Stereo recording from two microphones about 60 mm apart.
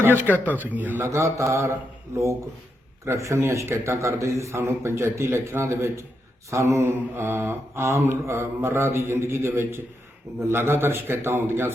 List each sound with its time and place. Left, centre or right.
0.1 s speech: left
0.4 s a man's voice: right
1.0 s mantra: right
3.0 s a man's voice: right